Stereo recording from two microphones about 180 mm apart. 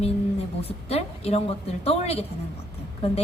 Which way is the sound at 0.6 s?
35° left (ahead or behind).